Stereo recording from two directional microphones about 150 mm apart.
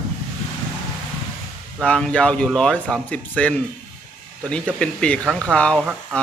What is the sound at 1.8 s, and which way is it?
Speech, 5° left (ahead or behind).